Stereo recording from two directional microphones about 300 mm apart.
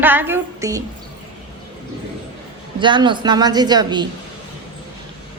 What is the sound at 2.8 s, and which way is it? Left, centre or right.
Speech, centre.